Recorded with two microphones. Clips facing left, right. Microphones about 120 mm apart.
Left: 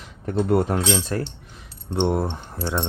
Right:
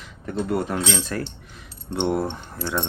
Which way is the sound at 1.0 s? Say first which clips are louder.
Left 2 dB; 30° left (ahead or behind).